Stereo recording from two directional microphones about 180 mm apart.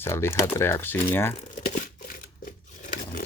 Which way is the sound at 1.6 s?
45° left (ahead or behind).